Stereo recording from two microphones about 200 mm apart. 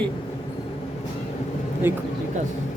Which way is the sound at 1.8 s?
10° right (ahead or behind).